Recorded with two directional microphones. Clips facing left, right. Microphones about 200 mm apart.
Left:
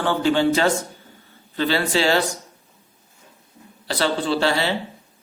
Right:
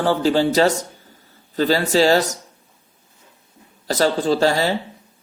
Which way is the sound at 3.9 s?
40° right (ahead or behind).